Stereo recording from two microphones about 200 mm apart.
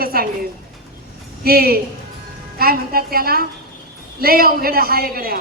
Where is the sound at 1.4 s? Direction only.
50° right (ahead or behind).